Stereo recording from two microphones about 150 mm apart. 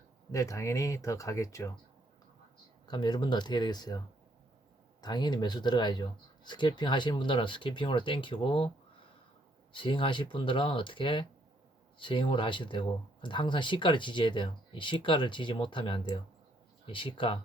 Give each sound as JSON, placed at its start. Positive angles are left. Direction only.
{"t": 0.3, "sound": "speech", "side_deg": 20}
{"t": 2.8, "sound": "speech", "side_deg": 30}
{"t": 9.7, "sound": "speech", "side_deg": 35}